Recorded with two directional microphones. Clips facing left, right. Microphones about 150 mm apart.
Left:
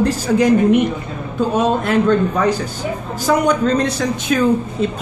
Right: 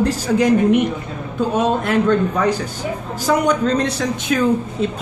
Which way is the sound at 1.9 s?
30° left (ahead or behind).